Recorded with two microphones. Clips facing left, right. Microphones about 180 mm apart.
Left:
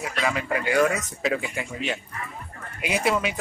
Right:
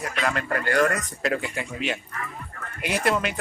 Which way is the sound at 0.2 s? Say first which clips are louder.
Left 1 dB; 5° left (ahead or behind).